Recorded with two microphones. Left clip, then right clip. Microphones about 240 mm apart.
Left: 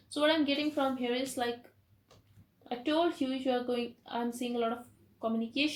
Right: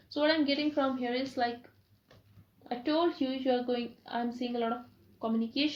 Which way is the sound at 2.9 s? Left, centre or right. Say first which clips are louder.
Even; right.